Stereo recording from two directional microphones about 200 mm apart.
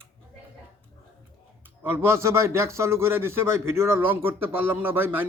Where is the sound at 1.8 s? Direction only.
10° right (ahead or behind).